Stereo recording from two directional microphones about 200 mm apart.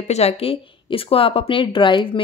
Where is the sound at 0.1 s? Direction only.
30° left (ahead or behind).